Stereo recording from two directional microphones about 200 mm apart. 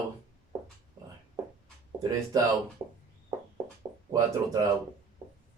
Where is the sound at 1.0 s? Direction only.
15° right (ahead or behind).